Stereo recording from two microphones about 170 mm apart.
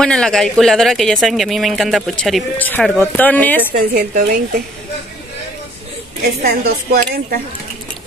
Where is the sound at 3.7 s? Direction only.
55° right (ahead or behind).